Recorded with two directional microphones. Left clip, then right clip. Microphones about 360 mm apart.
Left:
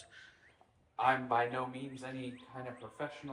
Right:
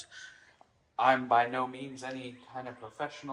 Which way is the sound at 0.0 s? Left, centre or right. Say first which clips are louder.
Right 8 dB; centre.